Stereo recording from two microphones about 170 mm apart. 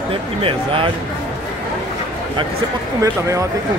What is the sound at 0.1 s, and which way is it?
Speech, 30° right (ahead or behind).